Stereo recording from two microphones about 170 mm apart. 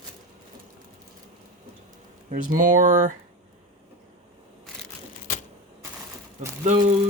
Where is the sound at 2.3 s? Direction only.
50° right (ahead or behind).